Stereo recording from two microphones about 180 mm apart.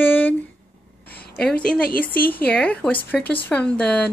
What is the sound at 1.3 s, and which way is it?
A woman's voice, 5° left (ahead or behind).